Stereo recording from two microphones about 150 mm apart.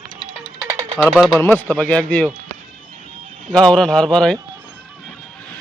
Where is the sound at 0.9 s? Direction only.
Centre (ahead or behind).